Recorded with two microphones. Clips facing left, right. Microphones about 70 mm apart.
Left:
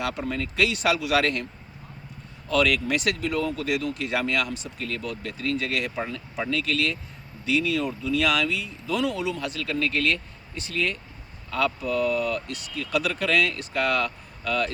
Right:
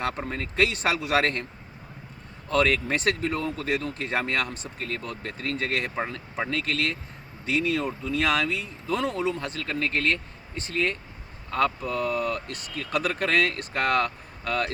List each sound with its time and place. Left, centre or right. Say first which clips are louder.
0.0 s speech: left 1 dB; right
2.5 s speech: left 1 dB; right